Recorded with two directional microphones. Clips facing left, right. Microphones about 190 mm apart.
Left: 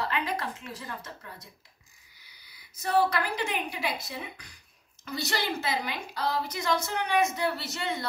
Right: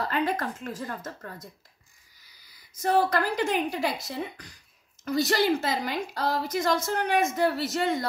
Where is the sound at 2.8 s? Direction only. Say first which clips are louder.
Right 2 dB; 40° right (ahead or behind).